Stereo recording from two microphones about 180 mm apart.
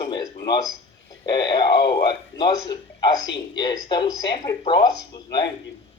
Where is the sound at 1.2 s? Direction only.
25° left (ahead or behind).